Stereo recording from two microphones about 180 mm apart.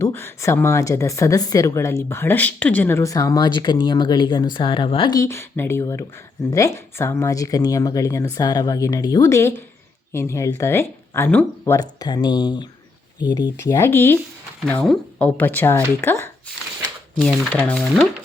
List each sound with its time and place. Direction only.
0.0 s speech: 15° left (ahead or behind)